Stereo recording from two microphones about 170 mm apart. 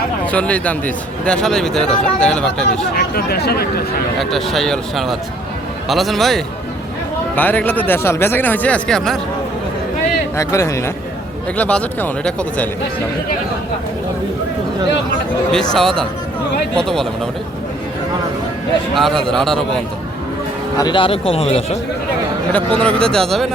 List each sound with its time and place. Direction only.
0.3 s speech: 10° left (ahead or behind)
2.9 s speech: 65° left (ahead or behind)
4.2 s speech: centre (ahead or behind)
10.3 s speech: 20° left (ahead or behind)
15.7 s speech: 5° left (ahead or behind)
18.9 s speech: centre (ahead or behind)
20.7 s a man's voice: 25° left (ahead or behind)
22.5 s speech: 5° left (ahead or behind)